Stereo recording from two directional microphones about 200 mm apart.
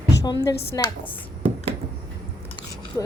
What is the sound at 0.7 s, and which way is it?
Speech, 20° left (ahead or behind).